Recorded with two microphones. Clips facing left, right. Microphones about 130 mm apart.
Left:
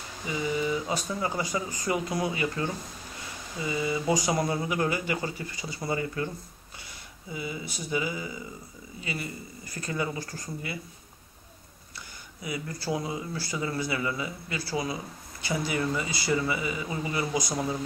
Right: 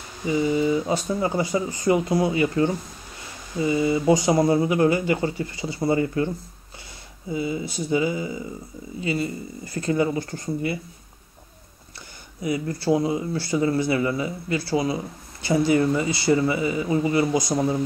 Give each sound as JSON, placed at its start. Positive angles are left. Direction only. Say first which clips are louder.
{"t": 0.3, "sound": "speech", "louder": "right 8 dB", "side_deg": -25}
{"t": 12.4, "sound": "speech", "louder": "right 9 dB", "side_deg": -25}